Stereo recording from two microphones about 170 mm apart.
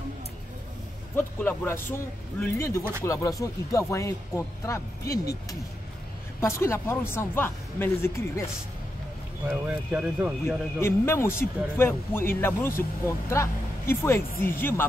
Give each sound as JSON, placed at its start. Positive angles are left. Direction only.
{"t": 1.1, "sound": "a man's voice", "side_deg": 10}
{"t": 5.1, "sound": "speech", "side_deg": 65}
{"t": 6.4, "sound": "a man's voice", "side_deg": 15}
{"t": 9.5, "sound": "speech", "side_deg": -5}
{"t": 10.4, "sound": "a man's voice", "side_deg": 15}